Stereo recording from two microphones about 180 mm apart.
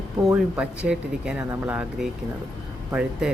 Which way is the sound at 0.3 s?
5° right (ahead or behind).